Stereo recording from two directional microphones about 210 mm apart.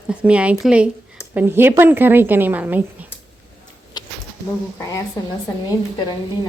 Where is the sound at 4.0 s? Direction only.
20° left (ahead or behind).